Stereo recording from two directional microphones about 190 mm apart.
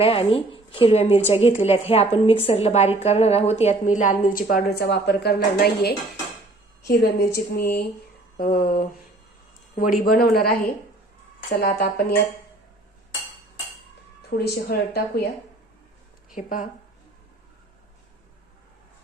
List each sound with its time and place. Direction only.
0.0 s a woman's voice: 30° left (ahead or behind); by 12.2 s 55° left (ahead or behind)
14.3 s speech: 55° left (ahead or behind)
16.3 s a woman's voice: 45° left (ahead or behind)